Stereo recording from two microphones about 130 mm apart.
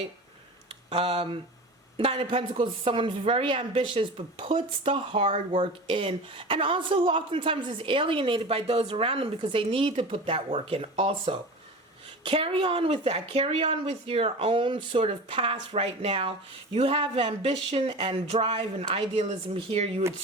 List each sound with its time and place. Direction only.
0.7 s speech: 50° right (ahead or behind)